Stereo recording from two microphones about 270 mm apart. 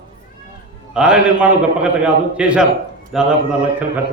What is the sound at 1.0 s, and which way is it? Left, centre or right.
A man's voice, centre.